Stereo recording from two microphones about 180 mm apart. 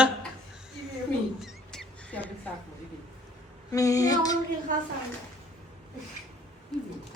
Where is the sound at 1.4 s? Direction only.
Centre (ahead or behind).